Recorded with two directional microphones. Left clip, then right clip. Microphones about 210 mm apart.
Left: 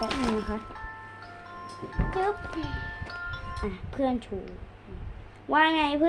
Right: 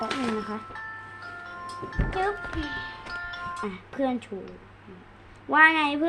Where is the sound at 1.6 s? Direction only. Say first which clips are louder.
Right 1 dB; 25° right (ahead or behind).